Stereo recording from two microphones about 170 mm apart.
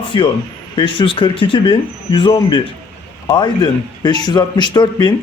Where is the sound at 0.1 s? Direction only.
25° left (ahead or behind).